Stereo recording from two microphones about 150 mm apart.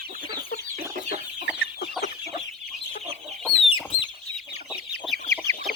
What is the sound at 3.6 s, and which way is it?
Chicken, 40° left (ahead or behind).